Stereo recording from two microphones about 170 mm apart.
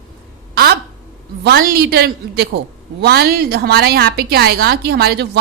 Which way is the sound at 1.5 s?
65° right (ahead or behind).